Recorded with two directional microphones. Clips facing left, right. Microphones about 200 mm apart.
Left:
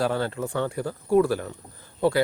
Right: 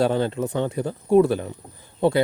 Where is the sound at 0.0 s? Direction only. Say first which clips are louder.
Right 4 dB; 20° right (ahead or behind).